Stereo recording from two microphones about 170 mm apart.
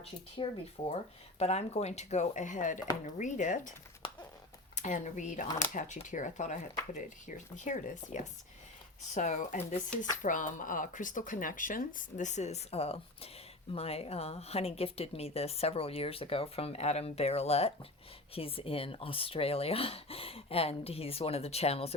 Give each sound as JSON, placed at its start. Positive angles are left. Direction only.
{"t": 0.4, "sound": "a woman's voice", "side_deg": 30}